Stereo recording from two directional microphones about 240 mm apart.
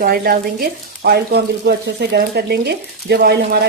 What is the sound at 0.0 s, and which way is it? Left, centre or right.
Speech, right.